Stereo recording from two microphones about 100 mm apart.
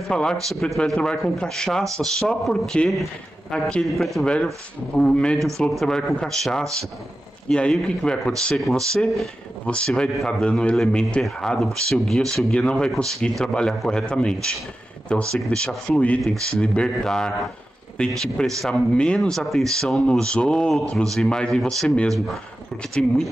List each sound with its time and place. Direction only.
0.1 s a man's voice: 10° left (ahead or behind)